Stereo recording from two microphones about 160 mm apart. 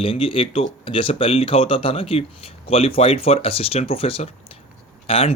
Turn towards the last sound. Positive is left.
turn(degrees=35)  # may be behind; listen again after turning